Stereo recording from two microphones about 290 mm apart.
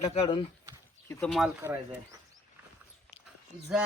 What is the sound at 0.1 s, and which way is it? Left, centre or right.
Speech, centre.